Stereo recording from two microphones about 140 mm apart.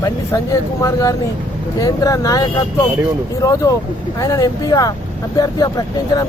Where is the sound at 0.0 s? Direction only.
25° left (ahead or behind).